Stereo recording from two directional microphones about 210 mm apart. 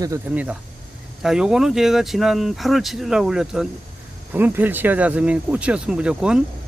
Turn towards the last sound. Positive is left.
turn(degrees=-5)  # may be behind; listen again after turning